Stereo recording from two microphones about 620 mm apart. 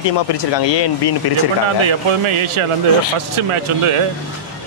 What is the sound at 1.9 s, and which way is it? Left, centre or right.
Speech, right.